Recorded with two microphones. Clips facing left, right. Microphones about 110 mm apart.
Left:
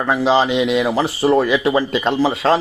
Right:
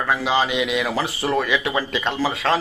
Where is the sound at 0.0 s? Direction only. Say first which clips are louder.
Left 5 dB; 25° left (ahead or behind).